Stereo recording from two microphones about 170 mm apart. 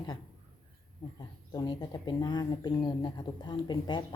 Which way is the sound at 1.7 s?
25° left (ahead or behind).